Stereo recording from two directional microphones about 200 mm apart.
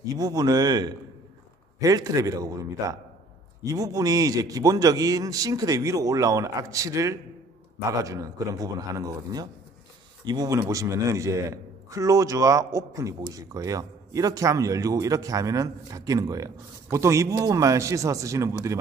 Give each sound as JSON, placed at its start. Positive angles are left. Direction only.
{"t": 0.1, "sound": "a man's voice", "side_deg": -20}